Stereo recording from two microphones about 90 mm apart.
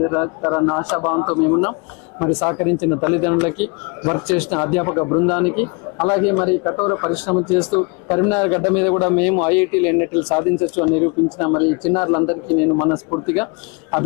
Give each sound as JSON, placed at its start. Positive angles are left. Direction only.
{"t": 0.0, "sound": "a man's voice", "side_deg": 25}
{"t": 5.3, "sound": "a man's voice", "side_deg": 15}
{"t": 7.1, "sound": "a man's voice", "side_deg": 10}